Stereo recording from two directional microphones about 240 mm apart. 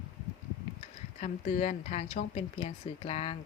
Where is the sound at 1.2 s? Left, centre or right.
Left.